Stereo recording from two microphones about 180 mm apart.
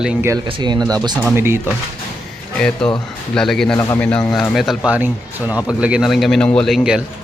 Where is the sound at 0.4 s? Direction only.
25° right (ahead or behind).